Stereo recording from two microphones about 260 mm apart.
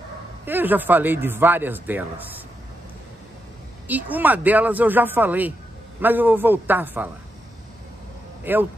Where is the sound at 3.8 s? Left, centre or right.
Centre.